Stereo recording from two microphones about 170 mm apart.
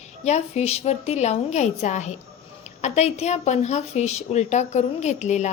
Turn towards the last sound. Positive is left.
turn(degrees=40)  # may be behind; listen again after turning